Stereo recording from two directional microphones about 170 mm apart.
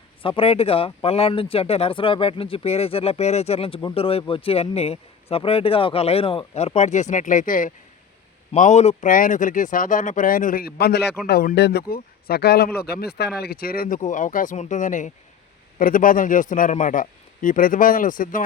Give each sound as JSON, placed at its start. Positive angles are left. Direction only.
{"t": 0.2, "sound": "speech", "side_deg": 35}